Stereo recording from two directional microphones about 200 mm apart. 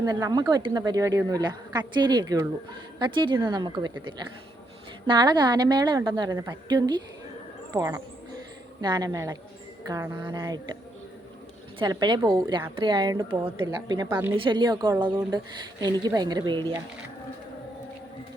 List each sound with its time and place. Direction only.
0.0 s a woman's voice: 20° right (ahead or behind)
11.8 s a woman's voice: 20° right (ahead or behind)